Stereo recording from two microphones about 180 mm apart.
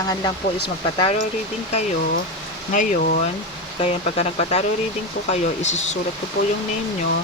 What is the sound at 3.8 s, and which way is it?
Speech, 35° left (ahead or behind).